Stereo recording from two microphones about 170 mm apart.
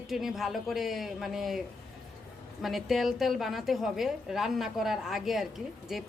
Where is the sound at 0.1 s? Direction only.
Centre (ahead or behind).